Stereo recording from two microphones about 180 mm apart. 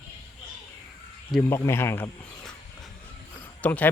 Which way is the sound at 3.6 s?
10° left (ahead or behind).